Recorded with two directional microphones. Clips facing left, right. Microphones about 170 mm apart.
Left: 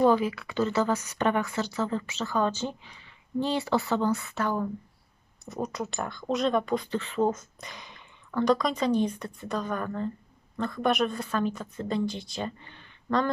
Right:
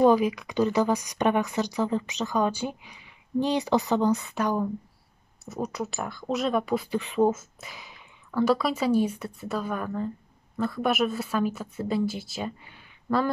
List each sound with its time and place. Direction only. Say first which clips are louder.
0.0 s a woman's voice: right 3 dB; 15° right (ahead or behind)
5.4 s speech: right 1 dB; centre (ahead or behind)